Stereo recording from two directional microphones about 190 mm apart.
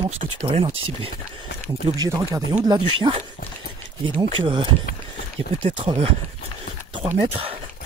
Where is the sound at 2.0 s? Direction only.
15° right (ahead or behind).